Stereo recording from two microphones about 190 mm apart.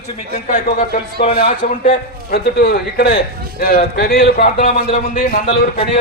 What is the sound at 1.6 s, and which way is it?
A man's voice, 45° left (ahead or behind).